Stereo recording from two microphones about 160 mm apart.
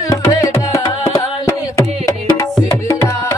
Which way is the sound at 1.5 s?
20° left (ahead or behind).